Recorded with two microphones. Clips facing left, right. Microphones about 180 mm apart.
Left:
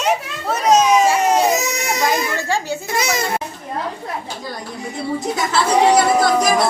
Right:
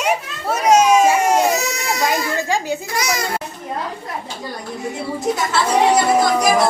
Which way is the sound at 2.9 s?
25° left (ahead or behind).